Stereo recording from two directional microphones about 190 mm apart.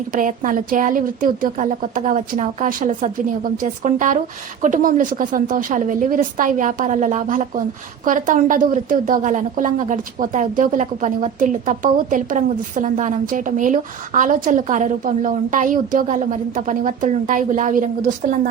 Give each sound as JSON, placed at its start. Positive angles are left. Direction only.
{"t": 0.1, "sound": "a woman's voice", "side_deg": -45}